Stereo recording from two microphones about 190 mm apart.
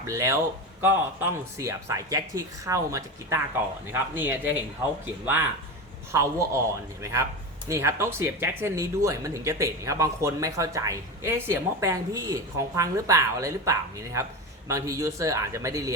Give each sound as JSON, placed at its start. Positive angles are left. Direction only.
{"t": 0.0, "sound": "speech", "side_deg": -15}